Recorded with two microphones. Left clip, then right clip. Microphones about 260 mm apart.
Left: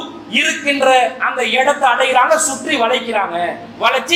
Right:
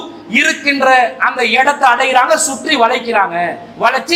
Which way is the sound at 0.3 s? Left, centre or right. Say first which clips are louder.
Right 3 dB; right.